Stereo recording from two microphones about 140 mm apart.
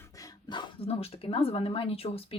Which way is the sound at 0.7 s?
45° left (ahead or behind).